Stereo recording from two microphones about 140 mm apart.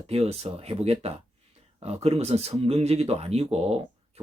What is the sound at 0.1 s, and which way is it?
Speech, 45° right (ahead or behind).